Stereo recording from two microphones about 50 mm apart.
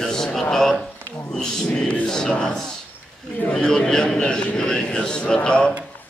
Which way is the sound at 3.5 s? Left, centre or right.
Centre.